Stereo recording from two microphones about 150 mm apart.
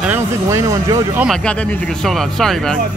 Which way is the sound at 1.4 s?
5° left (ahead or behind).